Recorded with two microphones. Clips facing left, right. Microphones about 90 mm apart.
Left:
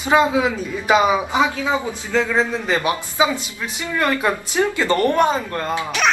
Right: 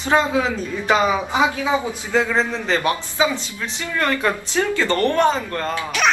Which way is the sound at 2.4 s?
5° left (ahead or behind).